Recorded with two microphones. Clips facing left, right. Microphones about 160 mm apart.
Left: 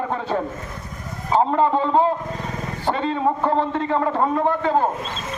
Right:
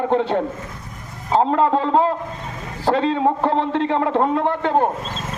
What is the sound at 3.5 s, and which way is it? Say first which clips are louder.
A man's voice: right 1 dB; 80° right.